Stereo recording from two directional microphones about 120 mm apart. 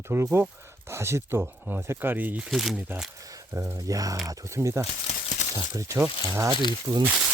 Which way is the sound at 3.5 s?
25° right (ahead or behind).